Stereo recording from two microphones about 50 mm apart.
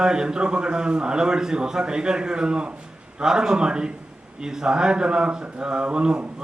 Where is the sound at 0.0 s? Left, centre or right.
Centre.